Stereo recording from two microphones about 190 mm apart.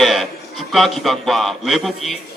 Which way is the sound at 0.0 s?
Centre (ahead or behind).